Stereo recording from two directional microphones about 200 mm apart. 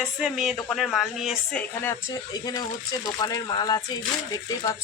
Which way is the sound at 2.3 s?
20° left (ahead or behind).